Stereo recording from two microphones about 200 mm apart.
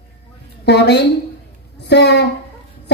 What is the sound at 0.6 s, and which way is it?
A woman's voice, 55° left (ahead or behind).